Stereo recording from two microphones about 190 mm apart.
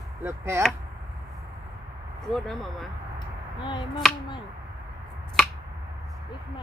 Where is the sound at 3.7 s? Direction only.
25° left (ahead or behind).